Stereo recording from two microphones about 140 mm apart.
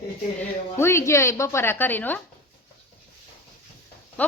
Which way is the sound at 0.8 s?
20° left (ahead or behind).